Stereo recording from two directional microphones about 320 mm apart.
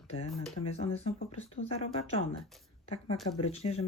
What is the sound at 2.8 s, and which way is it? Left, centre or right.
Speech, centre.